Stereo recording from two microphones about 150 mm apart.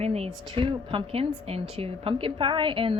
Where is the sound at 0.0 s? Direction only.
45° right (ahead or behind).